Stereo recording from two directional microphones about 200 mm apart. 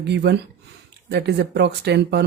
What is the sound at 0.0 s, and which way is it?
Speech, 55° right (ahead or behind).